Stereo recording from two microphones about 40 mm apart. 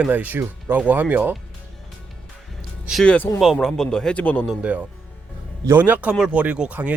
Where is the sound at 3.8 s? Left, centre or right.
Centre.